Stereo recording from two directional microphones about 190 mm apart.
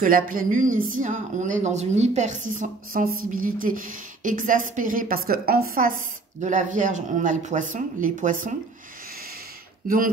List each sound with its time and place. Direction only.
0.0 s speech: 45° right (ahead or behind)
9.8 s speech: 50° right (ahead or behind)